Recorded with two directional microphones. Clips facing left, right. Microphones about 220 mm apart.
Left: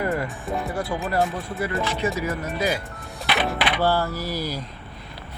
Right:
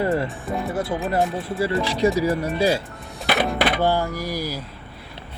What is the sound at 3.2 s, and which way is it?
Music, 45° right (ahead or behind).